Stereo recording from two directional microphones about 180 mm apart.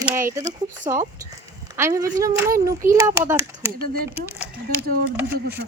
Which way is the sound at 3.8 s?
55° right (ahead or behind).